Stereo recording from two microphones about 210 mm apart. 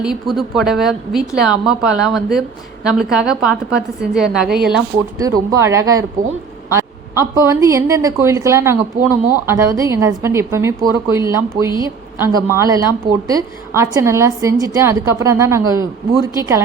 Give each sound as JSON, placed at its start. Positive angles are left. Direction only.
{"t": 0.0, "sound": "a woman's voice", "side_deg": 0}
{"t": 5.1, "sound": "a woman's voice", "side_deg": -15}
{"t": 7.2, "sound": "a woman's voice", "side_deg": -15}